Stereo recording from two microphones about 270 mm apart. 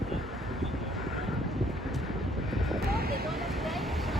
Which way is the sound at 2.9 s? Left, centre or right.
Right.